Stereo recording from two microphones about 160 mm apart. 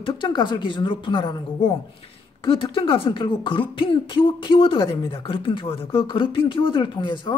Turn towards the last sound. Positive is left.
turn(degrees=30)  # may be behind; listen again after turning